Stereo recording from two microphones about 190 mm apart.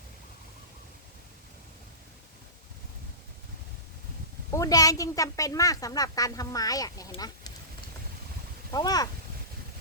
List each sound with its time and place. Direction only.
4.5 s speech: 20° left (ahead or behind)
8.7 s speech: 20° left (ahead or behind)